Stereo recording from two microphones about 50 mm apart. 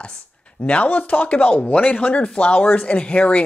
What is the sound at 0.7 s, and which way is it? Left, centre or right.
A woman's voice, left.